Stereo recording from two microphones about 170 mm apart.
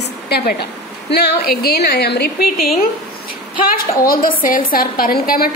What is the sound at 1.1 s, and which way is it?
A woman's voice, 70° left (ahead or behind).